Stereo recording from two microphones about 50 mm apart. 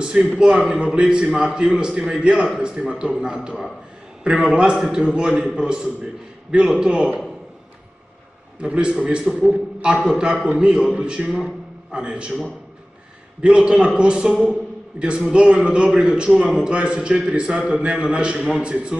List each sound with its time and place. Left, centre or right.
0.0 s a sound: centre
0.4 s a man's voice: centre
8.5 s a man's voice: right
13.4 s a man's voice: right